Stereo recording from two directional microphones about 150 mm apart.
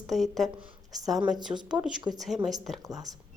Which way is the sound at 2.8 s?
25° right (ahead or behind).